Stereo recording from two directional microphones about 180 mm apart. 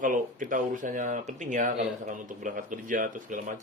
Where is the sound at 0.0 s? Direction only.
45° right (ahead or behind).